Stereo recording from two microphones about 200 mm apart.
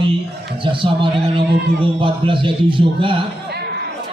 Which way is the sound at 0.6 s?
25° right (ahead or behind).